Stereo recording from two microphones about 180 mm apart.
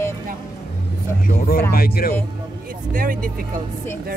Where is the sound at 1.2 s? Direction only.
55° left (ahead or behind).